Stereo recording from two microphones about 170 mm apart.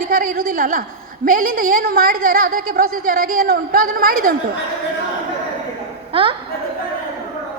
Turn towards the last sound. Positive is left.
turn(degrees=-30)  # may be behind; listen again after turning